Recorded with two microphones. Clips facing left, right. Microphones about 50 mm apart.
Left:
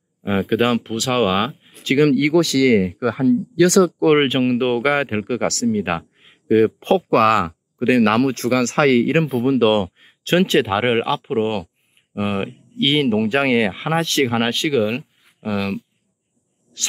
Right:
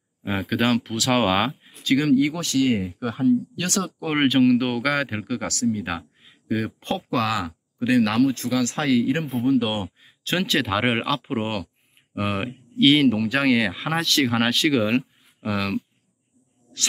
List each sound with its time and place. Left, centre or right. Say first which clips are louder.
0.2 s speech: left 5 dB; centre
0.9 s speech: left 2 dB; centre
1.5 s a sound: left 1 dB; centre
1.8 s speech: left 5 dB; left
2.0 s speech: left 5 dB; left
4.2 s speech: left 1 dB; left
5.2 s speech: left 5 dB; left
9.2 s speech: left 5 dB; left
9.5 s speech: left 6 dB; left
10.6 s speech: left 5 dB; centre
13.1 s speech: left 3 dB; left
14.7 s speech: left 2 dB; centre